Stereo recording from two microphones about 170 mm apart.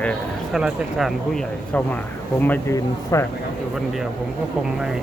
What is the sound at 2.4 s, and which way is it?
Speech, 15° left (ahead or behind).